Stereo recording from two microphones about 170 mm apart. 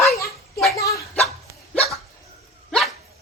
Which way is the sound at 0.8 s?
20° left (ahead or behind).